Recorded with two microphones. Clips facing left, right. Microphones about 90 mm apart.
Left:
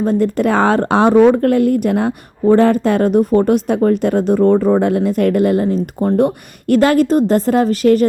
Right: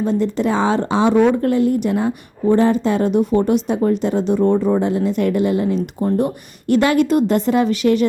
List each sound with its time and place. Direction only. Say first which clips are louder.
0.0 s speech: left 3 dB; 50° left (ahead or behind)